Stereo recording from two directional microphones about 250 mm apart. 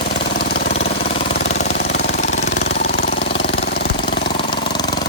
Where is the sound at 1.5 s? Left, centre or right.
Left.